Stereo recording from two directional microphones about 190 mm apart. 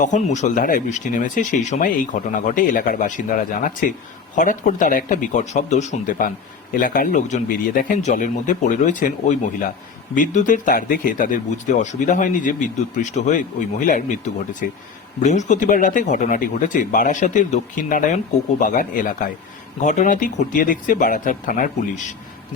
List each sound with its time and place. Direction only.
0.0 s speech: 40° left (ahead or behind)